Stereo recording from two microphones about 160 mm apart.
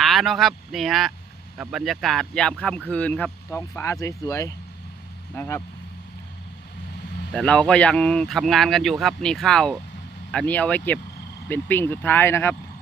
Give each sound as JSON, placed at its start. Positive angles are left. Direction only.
{"t": 0.0, "sound": "speech", "side_deg": 0}
{"t": 7.3, "sound": "speech", "side_deg": 5}